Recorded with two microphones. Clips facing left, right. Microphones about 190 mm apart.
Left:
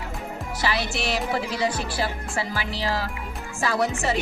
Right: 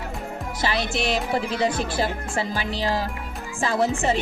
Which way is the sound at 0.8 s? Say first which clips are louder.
Right 2 dB; 5° left (ahead or behind).